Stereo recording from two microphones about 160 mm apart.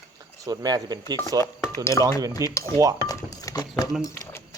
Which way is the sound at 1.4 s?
15° left (ahead or behind).